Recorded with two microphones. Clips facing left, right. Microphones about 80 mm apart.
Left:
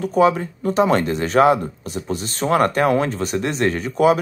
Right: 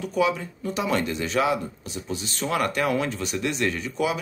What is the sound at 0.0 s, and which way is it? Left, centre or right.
Speech, left.